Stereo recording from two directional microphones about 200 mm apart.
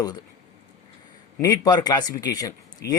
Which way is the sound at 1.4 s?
20° left (ahead or behind).